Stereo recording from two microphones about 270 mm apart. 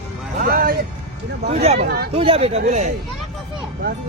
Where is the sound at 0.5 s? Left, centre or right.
Right.